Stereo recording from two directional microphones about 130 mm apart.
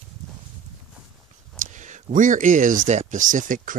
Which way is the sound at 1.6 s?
70° right (ahead or behind).